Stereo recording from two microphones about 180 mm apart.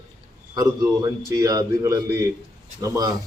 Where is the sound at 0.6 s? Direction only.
20° right (ahead or behind).